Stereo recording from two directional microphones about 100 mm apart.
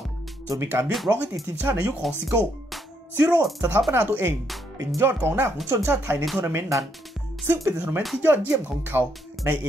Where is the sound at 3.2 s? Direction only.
15° right (ahead or behind).